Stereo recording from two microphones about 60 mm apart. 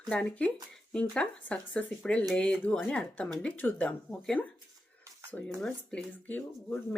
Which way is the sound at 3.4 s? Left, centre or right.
Left.